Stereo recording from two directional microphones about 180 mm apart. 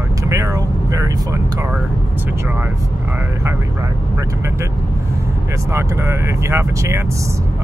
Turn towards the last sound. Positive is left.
turn(degrees=-15)  # may be behind; listen again after turning